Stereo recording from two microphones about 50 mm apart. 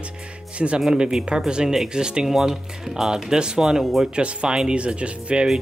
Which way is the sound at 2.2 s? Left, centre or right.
Centre.